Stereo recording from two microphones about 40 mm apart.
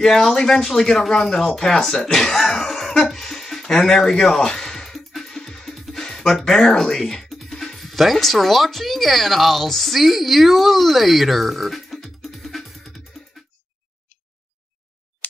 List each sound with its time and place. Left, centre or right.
0.0 s speech: centre
4.9 s music: centre
5.7 s music: centre
5.9 s music: centre
6.3 s speech: centre
7.2 s speech: centre